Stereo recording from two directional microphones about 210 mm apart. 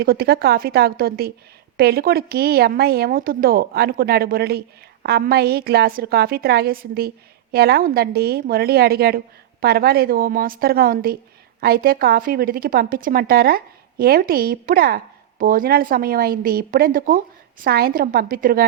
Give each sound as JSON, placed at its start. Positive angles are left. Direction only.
{"t": 0.0, "sound": "a woman's voice", "side_deg": -45}